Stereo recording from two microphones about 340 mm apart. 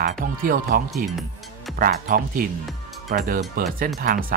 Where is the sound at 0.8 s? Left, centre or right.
Centre.